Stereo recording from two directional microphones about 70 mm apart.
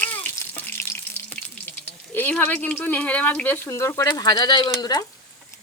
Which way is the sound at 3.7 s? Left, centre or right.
Left.